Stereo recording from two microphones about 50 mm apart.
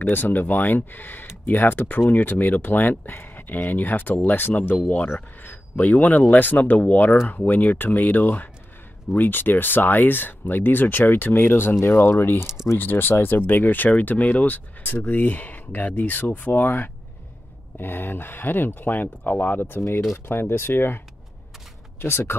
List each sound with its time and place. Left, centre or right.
0.1 s speech: left
22.0 s speech: left